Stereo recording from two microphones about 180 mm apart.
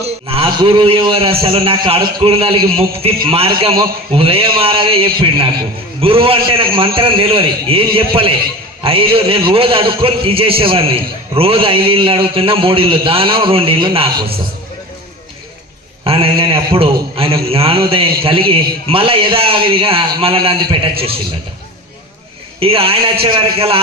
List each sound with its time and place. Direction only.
0.0 s a man's voice: 30° right (ahead or behind)
16.0 s a man's voice: 30° right (ahead or behind)
22.6 s a man's voice: 30° right (ahead or behind)